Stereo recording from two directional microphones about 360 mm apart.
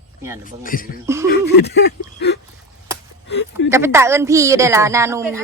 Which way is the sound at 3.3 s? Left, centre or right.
Left.